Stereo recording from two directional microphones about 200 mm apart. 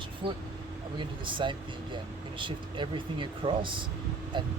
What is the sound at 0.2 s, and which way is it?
Speech, 25° right (ahead or behind).